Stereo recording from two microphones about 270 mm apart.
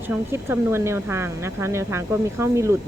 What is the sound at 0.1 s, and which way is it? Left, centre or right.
Speech, centre.